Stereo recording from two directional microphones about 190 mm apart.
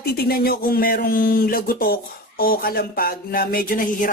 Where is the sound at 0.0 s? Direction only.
55° left (ahead or behind).